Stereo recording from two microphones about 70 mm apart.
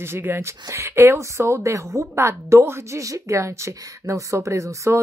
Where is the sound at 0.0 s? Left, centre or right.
Right.